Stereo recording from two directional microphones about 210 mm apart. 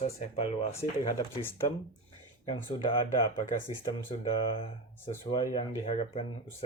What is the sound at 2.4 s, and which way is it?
Speech, 20° left (ahead or behind).